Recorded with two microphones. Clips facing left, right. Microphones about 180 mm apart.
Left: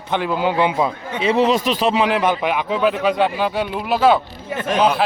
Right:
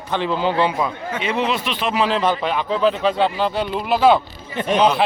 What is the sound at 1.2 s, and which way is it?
Speech, 35° left (ahead or behind).